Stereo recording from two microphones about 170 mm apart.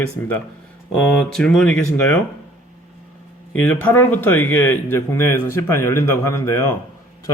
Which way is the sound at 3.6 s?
10° left (ahead or behind).